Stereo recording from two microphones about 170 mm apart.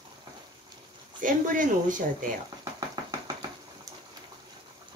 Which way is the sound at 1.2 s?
50° right (ahead or behind).